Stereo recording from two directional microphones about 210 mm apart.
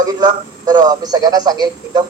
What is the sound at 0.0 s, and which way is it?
A man's voice, 20° right (ahead or behind).